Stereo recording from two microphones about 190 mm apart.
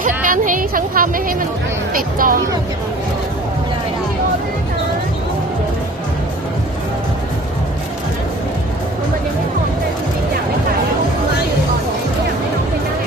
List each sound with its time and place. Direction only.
0.3 s a woman's voice: 45° right (ahead or behind)